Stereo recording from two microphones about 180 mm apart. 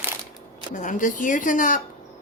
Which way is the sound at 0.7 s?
45° left (ahead or behind).